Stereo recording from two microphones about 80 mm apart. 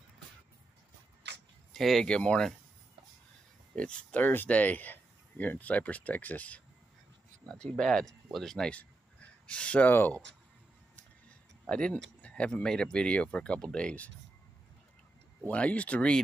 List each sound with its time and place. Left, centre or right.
1.7 s speech: centre
3.7 s speech: centre
7.4 s speech: centre; by 10.2 s left
11.7 s speech: centre
15.4 s speech: centre